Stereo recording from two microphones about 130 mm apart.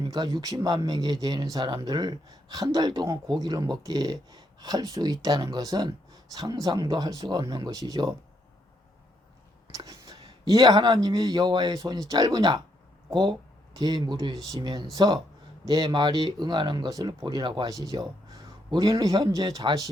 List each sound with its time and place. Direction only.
0.0 s speech: 35° right (ahead or behind)
10.1 s a sound: 45° right (ahead or behind)
10.4 s speech: 30° right (ahead or behind)
13.7 s a man's voice: 35° right (ahead or behind)